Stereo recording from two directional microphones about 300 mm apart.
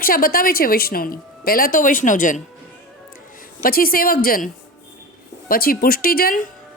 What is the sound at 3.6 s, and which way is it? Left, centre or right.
A woman's voice, left.